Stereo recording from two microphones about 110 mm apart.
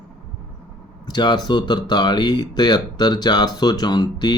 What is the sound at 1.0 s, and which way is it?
Speech, 40° left (ahead or behind).